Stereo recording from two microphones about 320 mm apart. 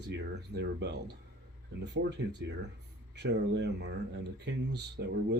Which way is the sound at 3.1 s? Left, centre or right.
Right.